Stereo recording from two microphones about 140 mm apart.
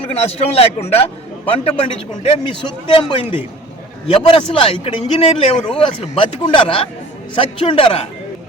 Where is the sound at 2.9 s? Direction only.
40° left (ahead or behind).